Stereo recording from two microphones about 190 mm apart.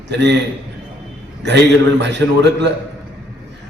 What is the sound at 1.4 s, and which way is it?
A man's voice, 65° right (ahead or behind).